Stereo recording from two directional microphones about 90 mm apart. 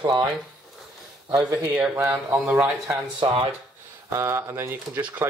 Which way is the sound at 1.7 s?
15° right (ahead or behind).